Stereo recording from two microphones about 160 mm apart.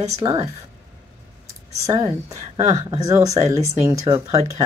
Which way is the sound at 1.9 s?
20° right (ahead or behind).